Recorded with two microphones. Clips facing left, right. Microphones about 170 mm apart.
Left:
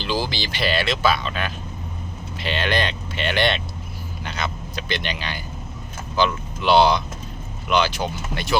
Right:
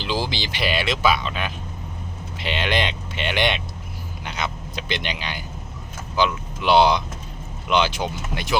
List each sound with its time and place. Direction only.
0.0 s speech: 20° right (ahead or behind)